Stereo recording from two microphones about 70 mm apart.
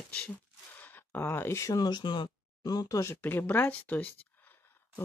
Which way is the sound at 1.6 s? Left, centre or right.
Left.